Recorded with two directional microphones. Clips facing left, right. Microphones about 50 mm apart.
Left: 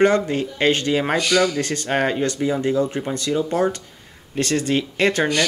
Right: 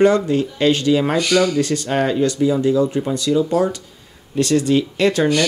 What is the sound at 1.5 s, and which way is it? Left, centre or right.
Speech, left.